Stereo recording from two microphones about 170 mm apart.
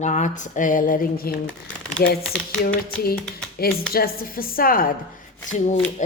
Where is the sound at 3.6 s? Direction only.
65° left (ahead or behind).